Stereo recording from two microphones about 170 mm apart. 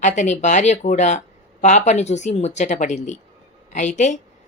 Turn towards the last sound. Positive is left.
turn(degrees=45)  # may be behind; listen again after turning